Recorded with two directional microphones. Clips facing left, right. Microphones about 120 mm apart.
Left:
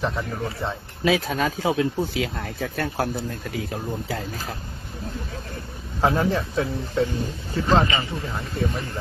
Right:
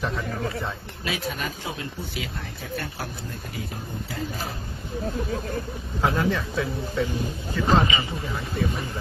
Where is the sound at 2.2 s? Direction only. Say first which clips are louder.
Left 7 dB; 75° left (ahead or behind).